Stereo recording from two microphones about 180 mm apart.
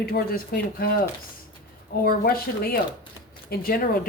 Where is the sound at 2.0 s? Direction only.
55° left (ahead or behind).